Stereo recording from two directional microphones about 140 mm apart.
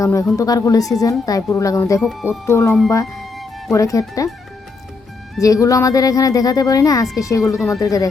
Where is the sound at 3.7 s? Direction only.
25° left (ahead or behind).